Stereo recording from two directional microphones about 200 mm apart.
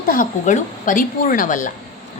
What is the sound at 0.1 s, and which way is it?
A woman's voice, 40° left (ahead or behind).